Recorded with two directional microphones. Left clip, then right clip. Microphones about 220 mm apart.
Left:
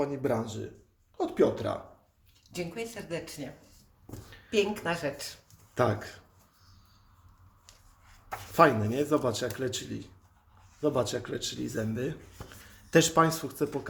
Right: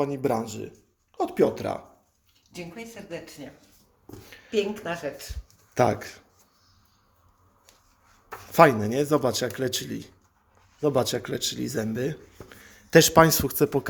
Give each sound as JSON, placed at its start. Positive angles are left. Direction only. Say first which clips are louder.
{"t": 0.0, "sound": "speech", "louder": "right 4 dB", "side_deg": -35}
{"t": 2.5, "sound": "speech", "louder": "left 3 dB", "side_deg": 20}
{"t": 4.4, "sound": "speech", "louder": "right 1 dB", "side_deg": 10}
{"t": 5.7, "sound": "speech", "louder": "right 5 dB", "side_deg": -35}
{"t": 8.5, "sound": "a man's voice", "louder": "right 5 dB", "side_deg": -35}